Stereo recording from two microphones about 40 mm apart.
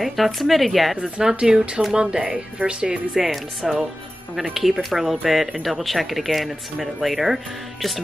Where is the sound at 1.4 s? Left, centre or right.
Centre.